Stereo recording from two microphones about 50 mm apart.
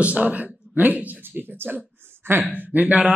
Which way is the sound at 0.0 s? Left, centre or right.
Right.